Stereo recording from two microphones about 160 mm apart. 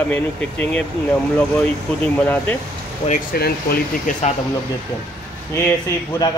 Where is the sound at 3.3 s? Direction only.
75° left (ahead or behind).